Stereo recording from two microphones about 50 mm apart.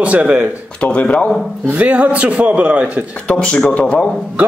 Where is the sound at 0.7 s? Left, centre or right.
Left.